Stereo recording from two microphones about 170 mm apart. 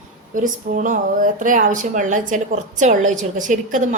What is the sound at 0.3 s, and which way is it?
Speech, 50° right (ahead or behind).